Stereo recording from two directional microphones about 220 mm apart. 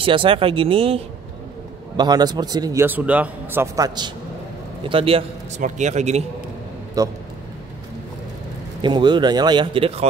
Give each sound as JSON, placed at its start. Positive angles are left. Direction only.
{"t": 0.0, "sound": "a man's voice", "side_deg": -25}
{"t": 7.0, "sound": "a man's voice", "side_deg": -15}
{"t": 8.8, "sound": "speech", "side_deg": -20}